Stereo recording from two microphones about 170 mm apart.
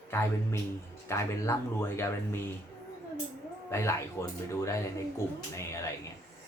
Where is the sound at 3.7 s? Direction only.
15° left (ahead or behind).